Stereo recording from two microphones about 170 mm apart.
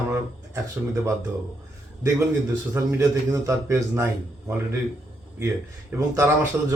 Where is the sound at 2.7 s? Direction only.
20° right (ahead or behind).